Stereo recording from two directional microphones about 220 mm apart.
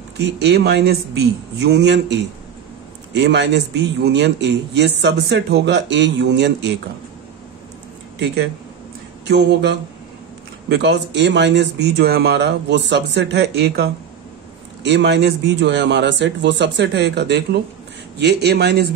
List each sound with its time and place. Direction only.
0.4 s a man's voice: 50° right (ahead or behind)
3.2 s a man's voice: 50° right (ahead or behind)
9.3 s a man's voice: 50° right (ahead or behind)
14.9 s a man's voice: 50° right (ahead or behind)